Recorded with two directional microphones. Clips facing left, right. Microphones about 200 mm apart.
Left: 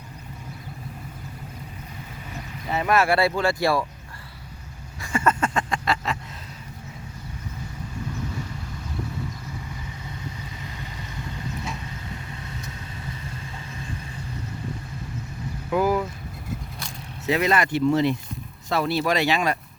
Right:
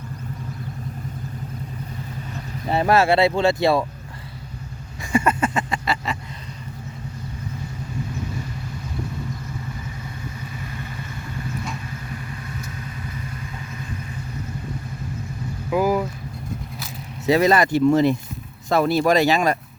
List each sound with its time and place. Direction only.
2.6 s speech: 35° right (ahead or behind)
5.1 s a sound: 10° right (ahead or behind)
15.7 s vehicle: 10° right (ahead or behind)
17.2 s speech: 35° right (ahead or behind)